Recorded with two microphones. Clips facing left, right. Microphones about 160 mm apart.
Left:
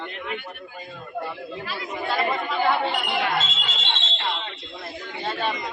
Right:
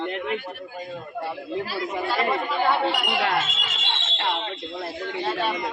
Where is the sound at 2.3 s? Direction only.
Centre (ahead or behind).